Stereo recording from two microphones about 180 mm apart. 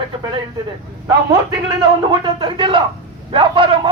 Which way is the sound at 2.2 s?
30° right (ahead or behind).